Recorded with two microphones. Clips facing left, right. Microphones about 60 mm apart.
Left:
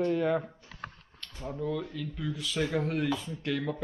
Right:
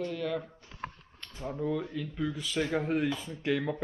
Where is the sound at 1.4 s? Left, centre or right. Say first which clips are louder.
Right 1 dB; centre.